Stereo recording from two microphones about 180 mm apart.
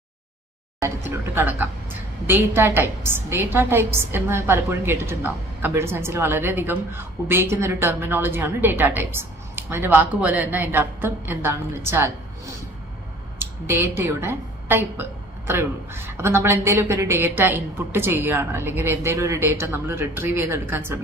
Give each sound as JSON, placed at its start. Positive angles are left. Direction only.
{"t": 0.8, "sound": "a woman's voice", "side_deg": -10}
{"t": 13.7, "sound": "a woman's voice", "side_deg": -10}